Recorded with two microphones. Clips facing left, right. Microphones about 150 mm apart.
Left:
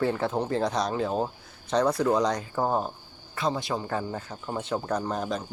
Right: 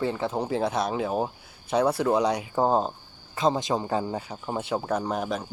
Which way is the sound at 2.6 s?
25° right (ahead or behind).